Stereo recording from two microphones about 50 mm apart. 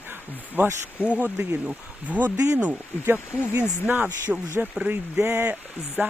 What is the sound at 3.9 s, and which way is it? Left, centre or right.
Speech, right.